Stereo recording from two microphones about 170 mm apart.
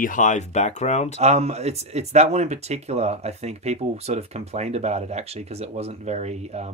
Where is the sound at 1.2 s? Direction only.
40° right (ahead or behind).